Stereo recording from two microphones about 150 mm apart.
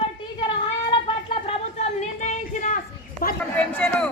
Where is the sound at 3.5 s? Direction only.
10° left (ahead or behind).